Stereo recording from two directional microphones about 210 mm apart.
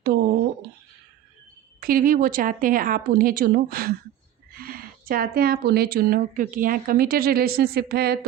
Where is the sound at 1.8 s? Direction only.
45° right (ahead or behind).